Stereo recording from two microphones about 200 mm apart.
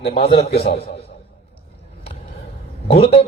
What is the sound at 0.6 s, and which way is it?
Speech, 50° left (ahead or behind).